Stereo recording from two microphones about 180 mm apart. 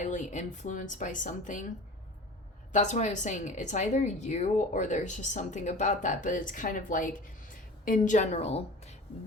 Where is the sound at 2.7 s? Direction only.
40° left (ahead or behind).